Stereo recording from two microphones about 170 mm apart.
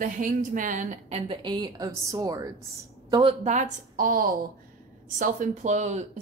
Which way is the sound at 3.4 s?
45° right (ahead or behind).